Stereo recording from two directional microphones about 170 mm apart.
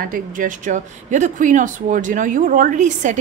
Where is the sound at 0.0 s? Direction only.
55° right (ahead or behind).